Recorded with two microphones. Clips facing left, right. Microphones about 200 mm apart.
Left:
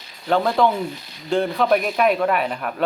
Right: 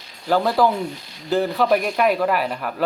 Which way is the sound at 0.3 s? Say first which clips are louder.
Even; centre (ahead or behind).